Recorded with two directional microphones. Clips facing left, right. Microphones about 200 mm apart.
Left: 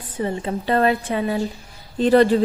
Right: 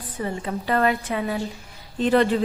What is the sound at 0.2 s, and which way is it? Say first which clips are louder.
A woman's voice: left 4 dB; 25° left (ahead or behind).